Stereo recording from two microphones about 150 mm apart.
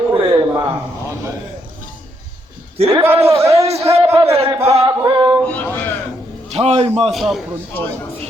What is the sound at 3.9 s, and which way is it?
Speech, 40° right (ahead or behind).